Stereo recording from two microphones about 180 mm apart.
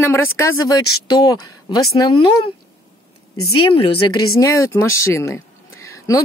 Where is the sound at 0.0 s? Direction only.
15° left (ahead or behind); by 4.2 s 30° left (ahead or behind).